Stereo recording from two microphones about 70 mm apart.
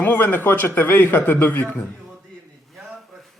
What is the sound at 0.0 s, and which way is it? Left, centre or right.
A man's voice, left.